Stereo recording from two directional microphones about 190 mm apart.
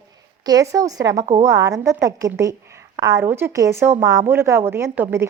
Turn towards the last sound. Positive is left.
turn(degrees=-10)  # may be behind; listen again after turning